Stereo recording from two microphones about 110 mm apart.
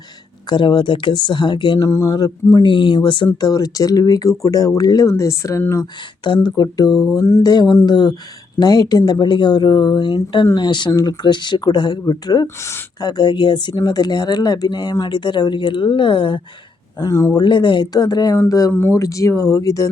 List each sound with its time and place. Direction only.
0.4 s speech: 40° left (ahead or behind)
1.8 s speech: 25° left (ahead or behind)
2.6 s speech: 45° left (ahead or behind)
3.4 s speech: 35° left (ahead or behind)
6.2 s speech: 45° left (ahead or behind); by 7.4 s 25° left (ahead or behind)
7.4 s speech: 35° left (ahead or behind)
13.0 s speech: 40° left (ahead or behind)
17.0 s speech: 30° left (ahead or behind)
17.4 s speech: 45° left (ahead or behind)
18.7 s speech: 20° left (ahead or behind)